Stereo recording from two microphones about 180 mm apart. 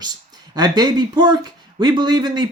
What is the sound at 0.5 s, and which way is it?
Speech, 20° right (ahead or behind).